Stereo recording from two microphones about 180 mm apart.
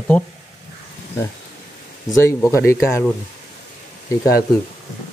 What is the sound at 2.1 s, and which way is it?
Speech, 15° left (ahead or behind).